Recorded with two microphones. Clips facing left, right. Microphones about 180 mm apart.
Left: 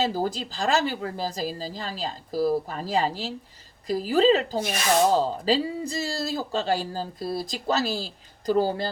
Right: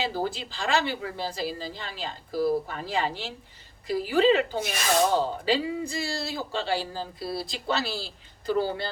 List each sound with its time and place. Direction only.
0.0 s a man's voice: 40° left (ahead or behind)